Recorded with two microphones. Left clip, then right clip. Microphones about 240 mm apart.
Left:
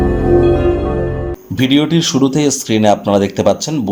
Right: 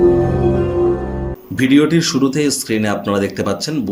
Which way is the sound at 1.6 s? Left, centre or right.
Centre.